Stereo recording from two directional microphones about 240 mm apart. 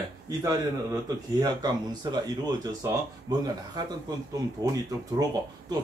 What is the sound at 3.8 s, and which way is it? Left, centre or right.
Speech, centre.